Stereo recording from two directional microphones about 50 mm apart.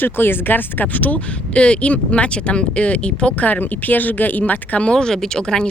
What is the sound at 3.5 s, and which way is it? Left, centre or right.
Speech, left.